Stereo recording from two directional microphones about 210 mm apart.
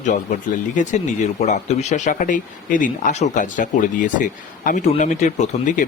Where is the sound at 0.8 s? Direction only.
35° left (ahead or behind).